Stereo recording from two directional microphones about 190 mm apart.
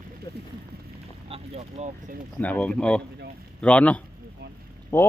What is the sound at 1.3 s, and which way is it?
Speech, 35° right (ahead or behind).